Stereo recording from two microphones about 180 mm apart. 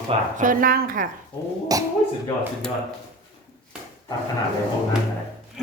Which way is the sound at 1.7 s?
20° right (ahead or behind).